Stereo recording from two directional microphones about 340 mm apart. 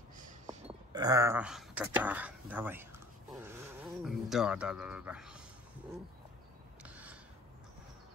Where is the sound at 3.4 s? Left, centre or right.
Centre.